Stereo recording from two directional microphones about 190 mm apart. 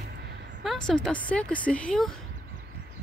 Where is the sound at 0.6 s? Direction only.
5° left (ahead or behind).